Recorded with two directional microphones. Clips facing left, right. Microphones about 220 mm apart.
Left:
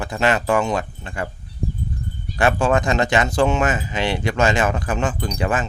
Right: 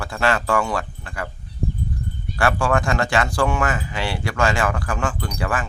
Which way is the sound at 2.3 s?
20° left (ahead or behind).